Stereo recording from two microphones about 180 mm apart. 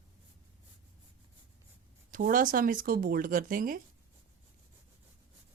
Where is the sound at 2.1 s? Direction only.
50° right (ahead or behind).